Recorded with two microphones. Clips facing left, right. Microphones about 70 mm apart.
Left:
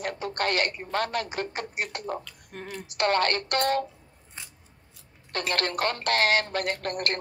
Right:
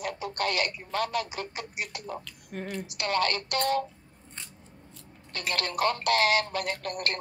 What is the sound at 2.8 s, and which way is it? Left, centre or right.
Speech, left.